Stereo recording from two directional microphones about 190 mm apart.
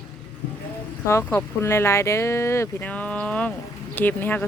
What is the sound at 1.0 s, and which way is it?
Speech, 15° left (ahead or behind).